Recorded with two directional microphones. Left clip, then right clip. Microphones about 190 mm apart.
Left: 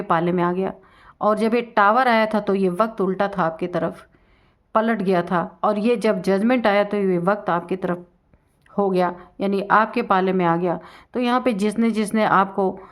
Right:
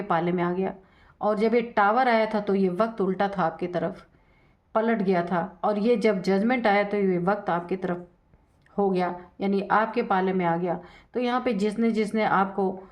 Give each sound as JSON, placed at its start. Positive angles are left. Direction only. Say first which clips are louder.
{"t": 0.1, "sound": "speech", "louder": "left 5 dB", "side_deg": 30}